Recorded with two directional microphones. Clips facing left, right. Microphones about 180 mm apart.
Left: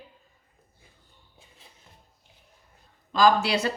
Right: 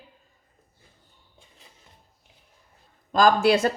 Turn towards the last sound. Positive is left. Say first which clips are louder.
# right 3 dB
turn(degrees=-50)  # may be behind; listen again after turning